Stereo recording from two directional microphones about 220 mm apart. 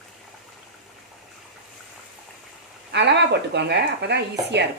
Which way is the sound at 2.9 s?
50° right (ahead or behind).